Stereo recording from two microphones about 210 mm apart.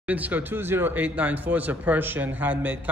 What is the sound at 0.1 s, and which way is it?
Speech, 10° right (ahead or behind).